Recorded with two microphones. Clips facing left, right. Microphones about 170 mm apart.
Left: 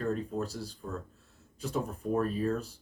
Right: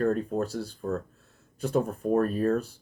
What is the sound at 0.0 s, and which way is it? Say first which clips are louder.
Speech: right 6 dB; 55° right (ahead or behind).